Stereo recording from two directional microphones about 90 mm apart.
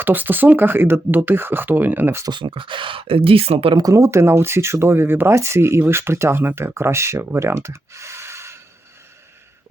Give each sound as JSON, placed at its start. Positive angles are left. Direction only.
{"t": 0.0, "sound": "speech", "side_deg": -20}
{"t": 2.2, "sound": "speech", "side_deg": -60}
{"t": 3.8, "sound": "speech", "side_deg": -40}